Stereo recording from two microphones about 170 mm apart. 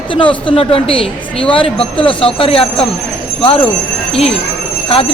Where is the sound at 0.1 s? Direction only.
30° left (ahead or behind).